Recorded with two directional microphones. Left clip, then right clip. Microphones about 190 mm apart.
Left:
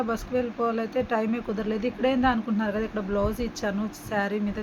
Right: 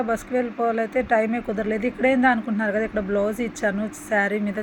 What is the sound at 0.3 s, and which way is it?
Speech, 10° right (ahead or behind).